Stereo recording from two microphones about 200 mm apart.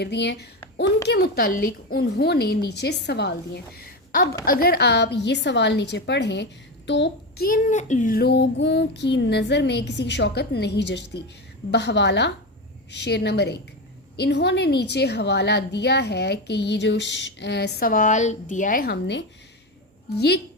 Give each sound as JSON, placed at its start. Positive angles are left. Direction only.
{"t": 0.0, "sound": "a woman's voice", "side_deg": 55}